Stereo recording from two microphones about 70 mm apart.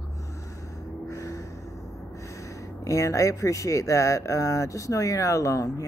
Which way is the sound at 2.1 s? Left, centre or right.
Left.